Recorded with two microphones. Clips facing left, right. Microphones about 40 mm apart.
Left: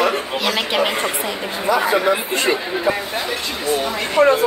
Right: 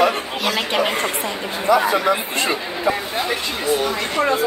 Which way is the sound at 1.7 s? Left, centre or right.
Centre.